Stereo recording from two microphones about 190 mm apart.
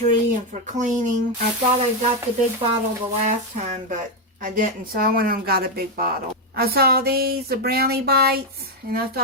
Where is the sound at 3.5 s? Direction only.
40° right (ahead or behind).